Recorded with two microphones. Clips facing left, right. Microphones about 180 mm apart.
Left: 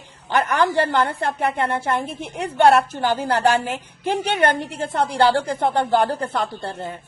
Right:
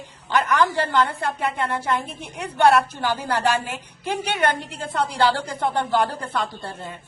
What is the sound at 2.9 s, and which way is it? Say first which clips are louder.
A woman's voice: left 4 dB; 50° left (ahead or behind).